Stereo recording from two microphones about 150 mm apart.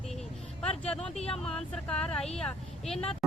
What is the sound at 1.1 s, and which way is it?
Speech, 45° left (ahead or behind).